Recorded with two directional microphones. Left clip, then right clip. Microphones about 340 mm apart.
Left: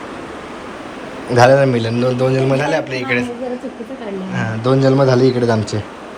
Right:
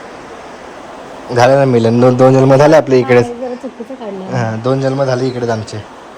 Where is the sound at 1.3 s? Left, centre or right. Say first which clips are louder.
Right 2 dB; centre.